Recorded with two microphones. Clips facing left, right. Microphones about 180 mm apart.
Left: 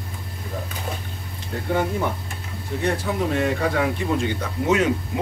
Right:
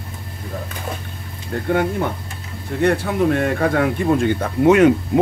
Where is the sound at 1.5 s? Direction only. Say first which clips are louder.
Right 5 dB; 60° right (ahead or behind).